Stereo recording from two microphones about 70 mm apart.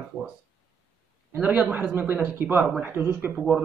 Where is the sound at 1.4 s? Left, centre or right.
Right.